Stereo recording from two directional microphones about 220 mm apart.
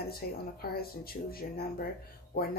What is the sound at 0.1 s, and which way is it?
Speech, 45° left (ahead or behind).